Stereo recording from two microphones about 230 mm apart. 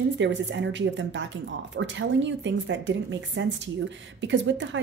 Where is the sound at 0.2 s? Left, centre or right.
Right.